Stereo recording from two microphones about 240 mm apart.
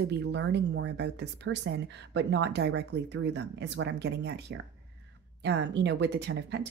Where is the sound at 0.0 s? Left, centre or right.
Right.